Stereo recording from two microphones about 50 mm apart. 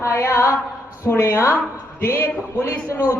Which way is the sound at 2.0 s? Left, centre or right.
Left.